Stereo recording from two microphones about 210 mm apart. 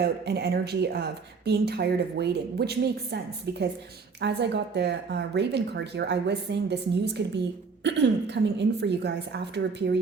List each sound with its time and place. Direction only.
0.0 s speech: 50° right (ahead or behind)